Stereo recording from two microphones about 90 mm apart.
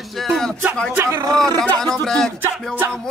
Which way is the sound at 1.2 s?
40° right (ahead or behind).